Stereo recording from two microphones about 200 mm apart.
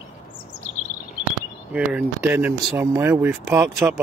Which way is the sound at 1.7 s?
5° right (ahead or behind).